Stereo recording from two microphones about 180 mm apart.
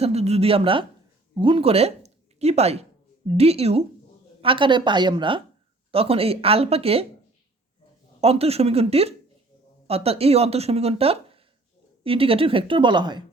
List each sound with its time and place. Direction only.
0.0 s speech: 35° right (ahead or behind)
8.2 s speech: 35° right (ahead or behind)